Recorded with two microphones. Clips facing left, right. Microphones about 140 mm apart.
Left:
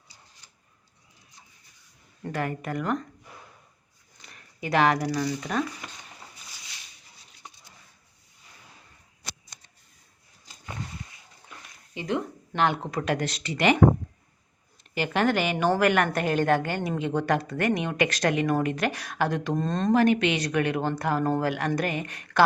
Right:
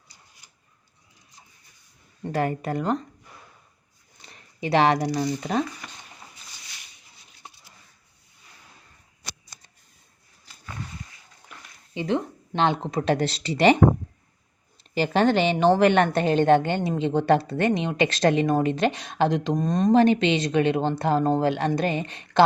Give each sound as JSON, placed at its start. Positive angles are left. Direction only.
{"t": 2.3, "sound": "speech", "side_deg": -35}
{"t": 4.2, "sound": "zipper", "side_deg": -30}
{"t": 5.1, "sound": "speech", "side_deg": -30}
{"t": 11.9, "sound": "a woman's voice", "side_deg": -30}
{"t": 14.9, "sound": "a woman's voice", "side_deg": -30}
{"t": 20.0, "sound": "a woman's voice", "side_deg": -30}